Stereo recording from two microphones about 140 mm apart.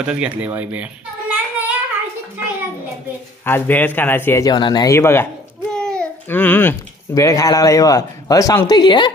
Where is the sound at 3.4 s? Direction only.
15° left (ahead or behind).